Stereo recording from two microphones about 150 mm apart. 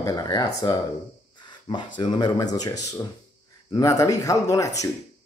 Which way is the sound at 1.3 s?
30° left (ahead or behind).